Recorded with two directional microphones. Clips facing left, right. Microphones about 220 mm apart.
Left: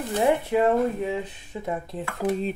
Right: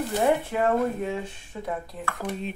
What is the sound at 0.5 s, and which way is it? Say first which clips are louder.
Speech: left 5 dB; 20° left (ahead or behind).